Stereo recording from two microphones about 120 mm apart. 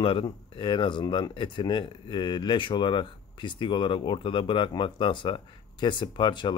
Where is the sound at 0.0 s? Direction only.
45° left (ahead or behind).